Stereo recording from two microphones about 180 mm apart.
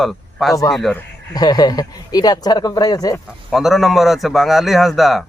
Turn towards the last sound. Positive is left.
turn(degrees=0)  # may be behind; listen again after turning